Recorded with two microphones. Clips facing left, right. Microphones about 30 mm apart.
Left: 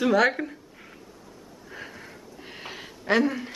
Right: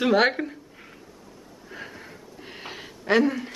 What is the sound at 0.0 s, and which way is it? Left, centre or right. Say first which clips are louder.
Speech: right 1 dB; right.